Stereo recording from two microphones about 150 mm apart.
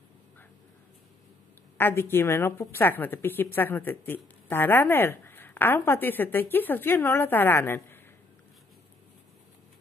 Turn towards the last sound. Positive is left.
turn(degrees=15)  # may be behind; listen again after turning